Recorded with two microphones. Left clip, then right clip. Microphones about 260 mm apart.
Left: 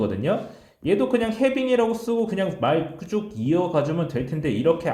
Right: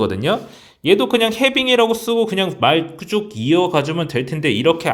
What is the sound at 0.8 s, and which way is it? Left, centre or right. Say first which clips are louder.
A man's voice: right 7 dB; right.